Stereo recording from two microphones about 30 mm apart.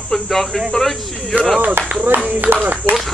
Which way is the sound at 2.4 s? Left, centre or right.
Right.